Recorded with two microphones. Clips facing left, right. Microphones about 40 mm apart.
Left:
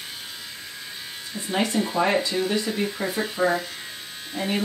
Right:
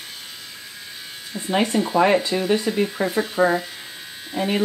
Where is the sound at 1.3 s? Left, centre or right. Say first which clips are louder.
Right 5 dB; centre.